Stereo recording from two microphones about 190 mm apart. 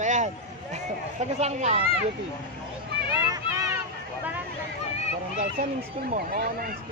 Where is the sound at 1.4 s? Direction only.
35° right (ahead or behind).